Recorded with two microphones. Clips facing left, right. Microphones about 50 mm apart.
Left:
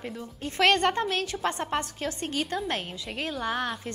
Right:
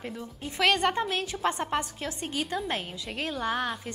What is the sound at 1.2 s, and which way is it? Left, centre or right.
Speech, right.